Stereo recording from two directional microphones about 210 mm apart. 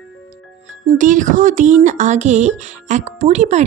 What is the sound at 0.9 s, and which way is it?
Speech, 35° right (ahead or behind).